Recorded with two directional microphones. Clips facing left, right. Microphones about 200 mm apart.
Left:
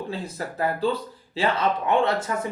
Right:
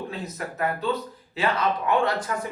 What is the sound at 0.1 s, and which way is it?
Speech, 30° left (ahead or behind).